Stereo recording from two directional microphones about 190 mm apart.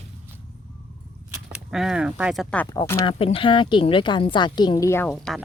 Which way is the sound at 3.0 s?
30° left (ahead or behind).